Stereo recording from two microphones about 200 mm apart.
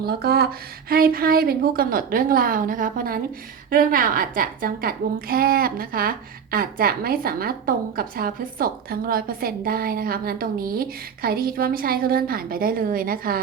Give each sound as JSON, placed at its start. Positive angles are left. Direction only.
{"t": 0.0, "sound": "a woman's voice", "side_deg": -50}